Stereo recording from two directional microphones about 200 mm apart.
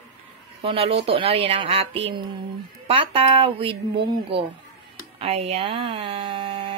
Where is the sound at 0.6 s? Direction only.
30° right (ahead or behind).